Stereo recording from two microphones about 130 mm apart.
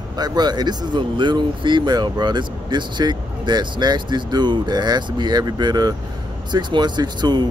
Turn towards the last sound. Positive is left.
turn(degrees=-35)  # may be behind; listen again after turning